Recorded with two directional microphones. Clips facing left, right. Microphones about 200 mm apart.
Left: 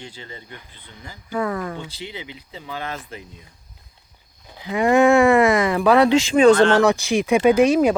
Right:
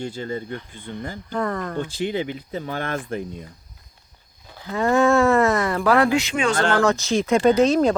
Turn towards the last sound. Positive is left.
turn(degrees=15)  # may be behind; listen again after turning